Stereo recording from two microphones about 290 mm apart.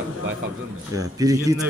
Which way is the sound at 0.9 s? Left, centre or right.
Centre.